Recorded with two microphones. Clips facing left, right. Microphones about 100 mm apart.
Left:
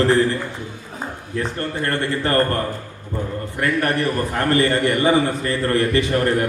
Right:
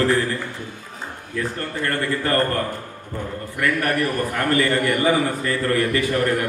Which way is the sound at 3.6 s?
30° left (ahead or behind).